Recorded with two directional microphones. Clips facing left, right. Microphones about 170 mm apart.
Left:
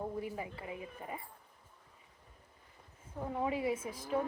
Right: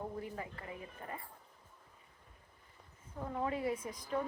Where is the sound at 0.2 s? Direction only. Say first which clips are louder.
Left 3 dB; 15° left (ahead or behind).